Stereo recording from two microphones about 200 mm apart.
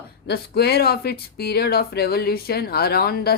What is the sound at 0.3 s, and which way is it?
A woman's voice, 55° left (ahead or behind).